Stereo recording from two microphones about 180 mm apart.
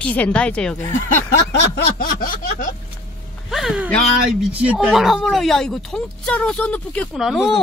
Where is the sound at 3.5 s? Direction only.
5° right (ahead or behind).